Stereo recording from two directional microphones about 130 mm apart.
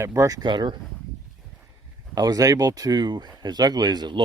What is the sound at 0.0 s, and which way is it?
Speech, 20° right (ahead or behind).